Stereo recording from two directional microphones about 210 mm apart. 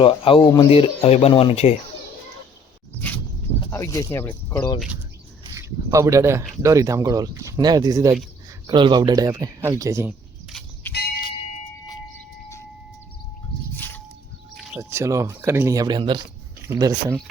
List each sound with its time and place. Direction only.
0.0 s speech: 25° left (ahead or behind)
3.7 s speech: 15° left (ahead or behind)
5.5 s speech: 15° right (ahead or behind)
10.5 s a sound: centre (ahead or behind)
13.7 s a sound: 10° left (ahead or behind)
14.8 s speech: 15° right (ahead or behind)